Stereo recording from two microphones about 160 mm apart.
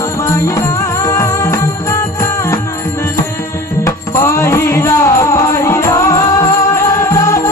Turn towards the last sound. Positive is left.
turn(degrees=20)  # may be behind; listen again after turning